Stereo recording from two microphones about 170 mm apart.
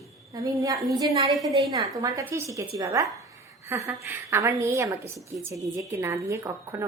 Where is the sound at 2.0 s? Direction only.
20° right (ahead or behind).